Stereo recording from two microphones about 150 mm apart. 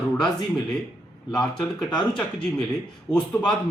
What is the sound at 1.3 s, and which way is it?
Speech, 5° left (ahead or behind).